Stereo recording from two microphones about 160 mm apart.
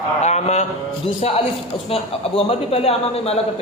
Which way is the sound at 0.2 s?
45° left (ahead or behind).